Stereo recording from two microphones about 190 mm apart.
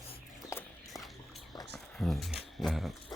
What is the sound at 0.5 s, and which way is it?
Walk, 15° left (ahead or behind).